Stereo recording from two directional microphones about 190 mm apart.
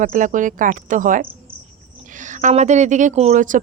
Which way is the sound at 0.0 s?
45° right (ahead or behind).